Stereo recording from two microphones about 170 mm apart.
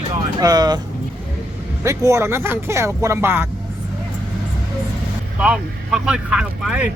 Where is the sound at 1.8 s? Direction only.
15° right (ahead or behind).